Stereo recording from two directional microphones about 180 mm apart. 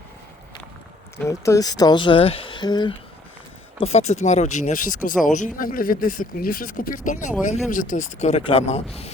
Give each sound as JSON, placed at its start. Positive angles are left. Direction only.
{"t": 1.3, "sound": "speech", "side_deg": 20}
{"t": 3.8, "sound": "speech", "side_deg": 35}